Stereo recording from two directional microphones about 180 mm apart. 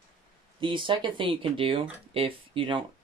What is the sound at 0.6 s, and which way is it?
Speech, 25° right (ahead or behind).